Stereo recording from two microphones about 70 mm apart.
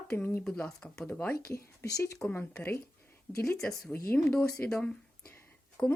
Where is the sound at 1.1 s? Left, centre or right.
Left.